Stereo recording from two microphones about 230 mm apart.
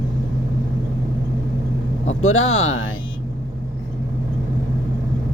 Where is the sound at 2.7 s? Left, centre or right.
Left.